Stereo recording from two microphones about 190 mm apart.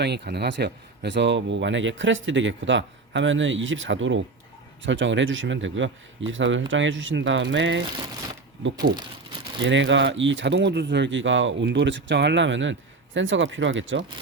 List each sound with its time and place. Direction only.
0.0 s speech: 60° right (ahead or behind)
9.6 s speech: 75° right (ahead or behind)